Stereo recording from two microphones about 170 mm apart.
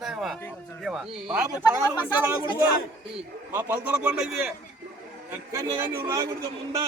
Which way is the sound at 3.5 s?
10° right (ahead or behind).